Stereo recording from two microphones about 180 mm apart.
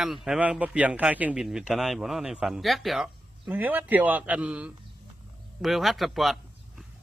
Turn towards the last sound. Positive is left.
turn(degrees=0)  # may be behind; listen again after turning